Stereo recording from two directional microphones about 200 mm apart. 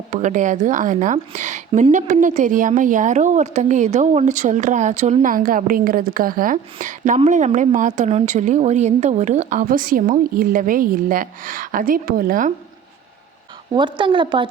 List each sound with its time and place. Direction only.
0.1 s a woman's voice: 35° right (ahead or behind)
13.7 s a woman's voice: 25° right (ahead or behind)